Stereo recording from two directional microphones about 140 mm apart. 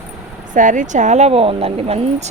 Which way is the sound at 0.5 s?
65° right (ahead or behind).